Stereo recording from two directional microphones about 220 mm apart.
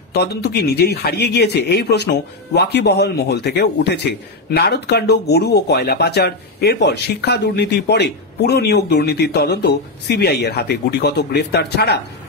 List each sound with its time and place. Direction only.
0.1 s speech: 45° left (ahead or behind)